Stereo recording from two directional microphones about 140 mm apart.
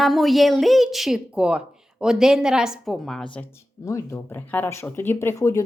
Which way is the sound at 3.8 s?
20° left (ahead or behind).